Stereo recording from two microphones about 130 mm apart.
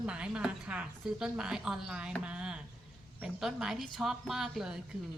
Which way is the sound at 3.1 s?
5° right (ahead or behind).